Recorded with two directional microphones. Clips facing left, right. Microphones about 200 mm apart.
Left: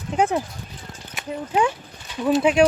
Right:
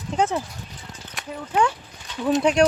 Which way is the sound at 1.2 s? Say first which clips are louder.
Left 3 dB; centre (ahead or behind).